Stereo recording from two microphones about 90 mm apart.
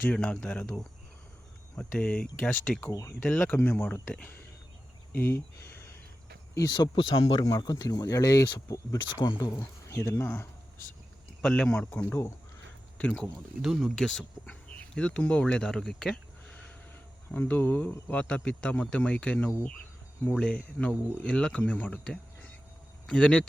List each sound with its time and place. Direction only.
0.1 s speech: 10° left (ahead or behind)
5.1 s a sound: 30° left (ahead or behind)
6.7 s speech: 50° left (ahead or behind)
9.0 s speech: 65° left (ahead or behind)
9.9 s speech: 25° left (ahead or behind)
11.4 s speech: 10° left (ahead or behind)
13.0 s speech: 15° left (ahead or behind)
13.6 s speech: 5° right (ahead or behind)
17.3 s speech: 20° left (ahead or behind)